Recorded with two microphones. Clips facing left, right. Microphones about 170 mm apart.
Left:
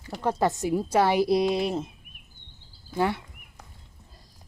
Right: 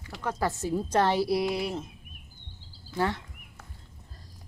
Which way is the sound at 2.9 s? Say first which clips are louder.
Left 3 dB; 15° left (ahead or behind).